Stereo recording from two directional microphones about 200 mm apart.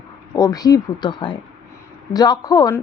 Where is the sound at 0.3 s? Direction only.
20° left (ahead or behind).